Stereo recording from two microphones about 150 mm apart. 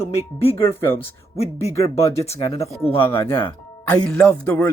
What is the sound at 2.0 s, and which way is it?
Speech, 20° left (ahead or behind).